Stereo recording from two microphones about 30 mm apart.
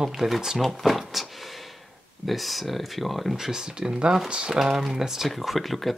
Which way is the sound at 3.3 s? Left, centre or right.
Right.